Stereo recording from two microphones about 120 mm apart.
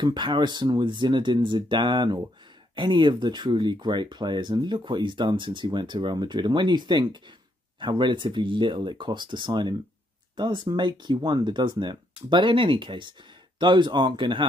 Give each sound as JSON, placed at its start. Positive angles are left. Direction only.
{"t": 0.0, "sound": "speech", "side_deg": -40}